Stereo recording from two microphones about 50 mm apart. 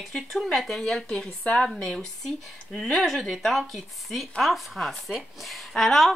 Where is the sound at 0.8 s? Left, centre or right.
Centre.